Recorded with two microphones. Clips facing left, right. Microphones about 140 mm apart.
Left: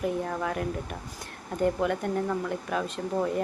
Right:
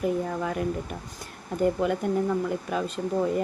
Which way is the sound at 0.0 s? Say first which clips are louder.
Right 2 dB; centre (ahead or behind).